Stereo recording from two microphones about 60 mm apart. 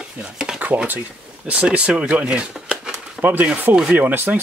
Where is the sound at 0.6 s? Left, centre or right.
Right.